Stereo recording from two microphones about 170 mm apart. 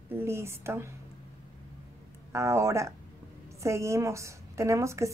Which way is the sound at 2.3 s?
15° right (ahead or behind).